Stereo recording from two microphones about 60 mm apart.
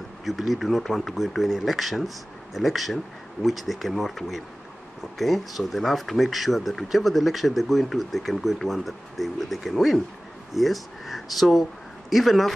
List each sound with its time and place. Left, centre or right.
0.2 s speech: centre